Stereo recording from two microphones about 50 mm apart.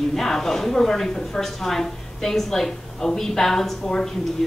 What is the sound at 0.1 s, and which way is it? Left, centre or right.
A woman's voice, centre.